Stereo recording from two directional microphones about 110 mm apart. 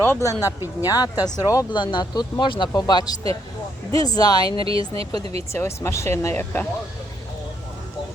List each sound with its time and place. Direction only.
0.0 s speech: 25° left (ahead or behind)
0.4 s speech: 20° right (ahead or behind)
0.9 s speech: 35° left (ahead or behind)
1.7 s speech: 45° left (ahead or behind)
4.5 s speech: 55° right (ahead or behind)
5.5 s speech: 25° left (ahead or behind)